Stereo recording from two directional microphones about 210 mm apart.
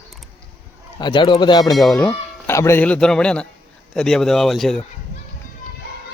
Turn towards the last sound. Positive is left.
turn(degrees=0)  # may be behind; listen again after turning